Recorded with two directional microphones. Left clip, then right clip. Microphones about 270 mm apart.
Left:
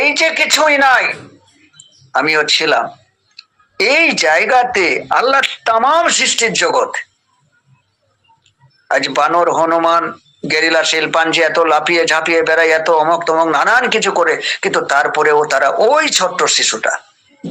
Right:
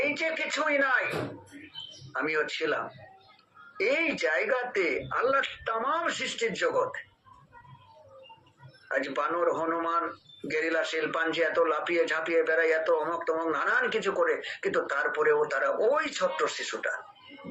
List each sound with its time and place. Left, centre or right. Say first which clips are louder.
0.0 s speech: left 16 dB; left
2.1 s speech: left 17 dB; left
8.9 s speech: left 16 dB; left